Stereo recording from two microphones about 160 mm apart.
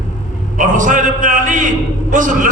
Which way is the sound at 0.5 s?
55° right (ahead or behind).